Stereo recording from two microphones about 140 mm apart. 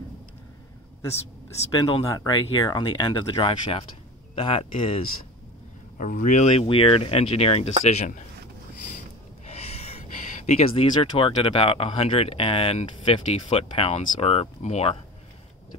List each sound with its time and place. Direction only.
1.8 s speech: 30° left (ahead or behind)
5.9 s speech: 70° left (ahead or behind)
9.5 s a sound: 50° left (ahead or behind)
10.4 s speech: 45° left (ahead or behind)